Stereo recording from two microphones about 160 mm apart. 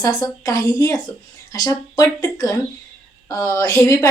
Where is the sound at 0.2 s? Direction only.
20° left (ahead or behind).